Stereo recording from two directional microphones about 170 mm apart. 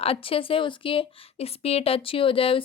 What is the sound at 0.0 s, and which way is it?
Speech, 35° left (ahead or behind).